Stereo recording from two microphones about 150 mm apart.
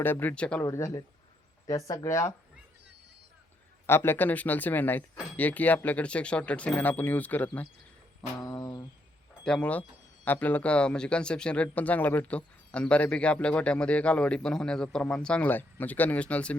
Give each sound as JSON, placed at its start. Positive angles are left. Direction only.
{"t": 0.0, "sound": "speech", "side_deg": 10}
{"t": 0.6, "sound": "speech", "side_deg": 20}
{"t": 3.8, "sound": "speech", "side_deg": 15}
{"t": 8.4, "sound": "speech", "side_deg": 25}
{"t": 9.4, "sound": "speech", "side_deg": 5}